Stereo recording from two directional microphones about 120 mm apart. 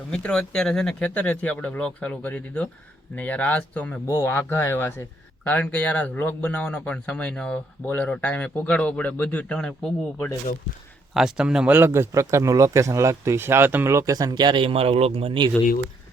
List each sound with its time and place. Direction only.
0.1 s speech: 5° left (ahead or behind)
4.0 s speech: 25° left (ahead or behind); by 15.4 s 50° right (ahead or behind)